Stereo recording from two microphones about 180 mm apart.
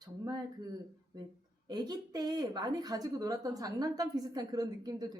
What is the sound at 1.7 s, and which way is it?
Speech, 20° right (ahead or behind).